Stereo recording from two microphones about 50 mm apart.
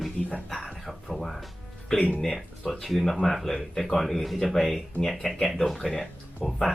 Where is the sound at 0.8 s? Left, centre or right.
Centre.